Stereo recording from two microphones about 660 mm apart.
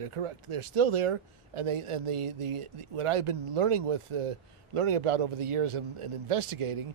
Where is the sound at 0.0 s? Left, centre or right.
Right.